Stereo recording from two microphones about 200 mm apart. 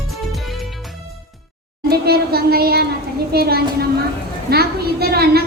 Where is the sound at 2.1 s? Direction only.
50° right (ahead or behind).